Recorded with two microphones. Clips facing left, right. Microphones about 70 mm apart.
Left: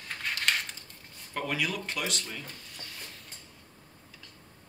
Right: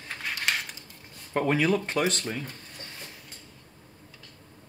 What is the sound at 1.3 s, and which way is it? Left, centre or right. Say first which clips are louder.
Speech: right 8 dB; right.